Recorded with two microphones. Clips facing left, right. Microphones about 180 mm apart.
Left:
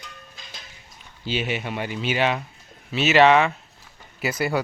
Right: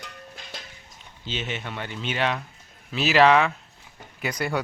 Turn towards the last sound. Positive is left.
turn(degrees=5)  # may be behind; listen again after turning